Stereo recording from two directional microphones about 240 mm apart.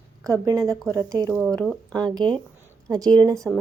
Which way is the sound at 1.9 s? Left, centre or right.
Centre.